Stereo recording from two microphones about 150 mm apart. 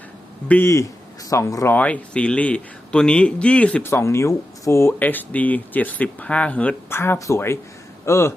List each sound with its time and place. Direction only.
0.4 s speech: 15° left (ahead or behind)
1.7 s speech: 10° left (ahead or behind)